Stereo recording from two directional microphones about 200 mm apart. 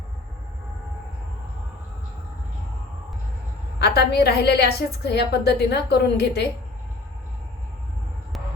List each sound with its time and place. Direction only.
3.8 s a woman's voice: 55° left (ahead or behind)